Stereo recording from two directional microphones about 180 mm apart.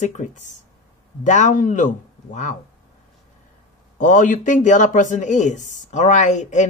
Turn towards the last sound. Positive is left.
turn(degrees=40)  # may be behind; listen again after turning